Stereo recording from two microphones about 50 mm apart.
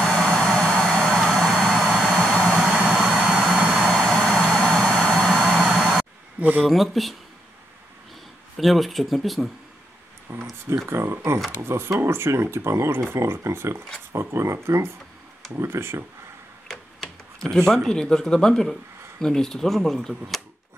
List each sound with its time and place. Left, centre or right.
0.0 s vehicle: centre
2.1 s vehicle: centre
2.9 s vehicle: centre
4.0 s vehicle: centre
6.6 s speech: centre
8.5 s speech: centre
10.3 s speech: right
10.9 s speech: right
11.6 s speech: right
13.1 s speech: right
14.1 s speech: right
15.5 s speech: right
16.6 s speech: centre